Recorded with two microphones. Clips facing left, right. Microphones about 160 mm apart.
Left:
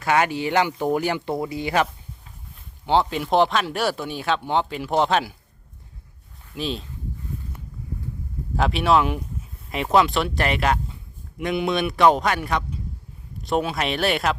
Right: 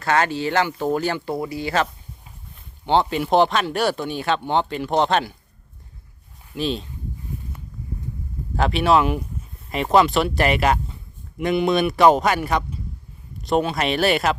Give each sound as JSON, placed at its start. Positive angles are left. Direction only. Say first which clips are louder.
{"t": 0.0, "sound": "speech", "louder": "even", "side_deg": 15}
{"t": 2.8, "sound": "speech", "louder": "right 1 dB", "side_deg": 0}
{"t": 6.6, "sound": "speech", "louder": "right 4 dB", "side_deg": 0}
{"t": 8.5, "sound": "speech", "louder": "right 1 dB", "side_deg": 0}